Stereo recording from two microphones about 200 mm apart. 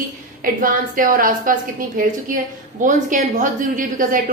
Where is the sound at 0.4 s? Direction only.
45° right (ahead or behind).